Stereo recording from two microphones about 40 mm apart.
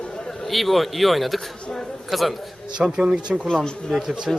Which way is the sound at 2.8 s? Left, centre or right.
Right.